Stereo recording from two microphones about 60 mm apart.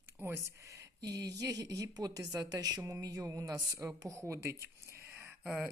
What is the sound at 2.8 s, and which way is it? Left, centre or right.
A woman's voice, right.